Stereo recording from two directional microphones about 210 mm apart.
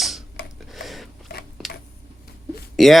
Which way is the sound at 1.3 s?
50° left (ahead or behind).